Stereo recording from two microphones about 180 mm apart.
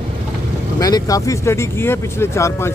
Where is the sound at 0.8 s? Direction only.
20° left (ahead or behind).